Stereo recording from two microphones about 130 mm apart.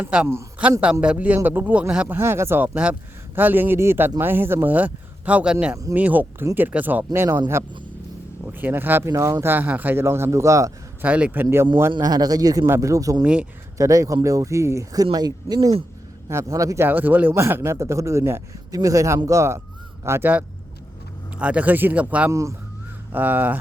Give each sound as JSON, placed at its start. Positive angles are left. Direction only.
{"t": 0.0, "sound": "a man's voice", "side_deg": -5}
{"t": 11.0, "sound": "a man's voice", "side_deg": -10}
{"t": 13.2, "sound": "speech", "side_deg": -10}
{"t": 13.7, "sound": "a man's voice", "side_deg": -25}
{"t": 22.3, "sound": "a man's voice", "side_deg": -25}